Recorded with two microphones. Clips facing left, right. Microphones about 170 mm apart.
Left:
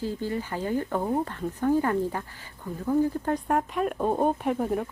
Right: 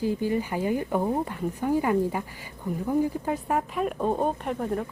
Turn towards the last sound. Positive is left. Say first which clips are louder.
# left 2 dB
turn(degrees=5)  # may be behind; listen again after turning